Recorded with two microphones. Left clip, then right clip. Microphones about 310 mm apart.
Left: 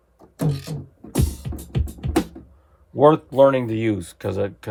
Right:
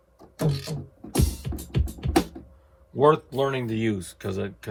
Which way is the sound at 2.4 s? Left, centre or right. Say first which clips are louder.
Left 1 dB; centre.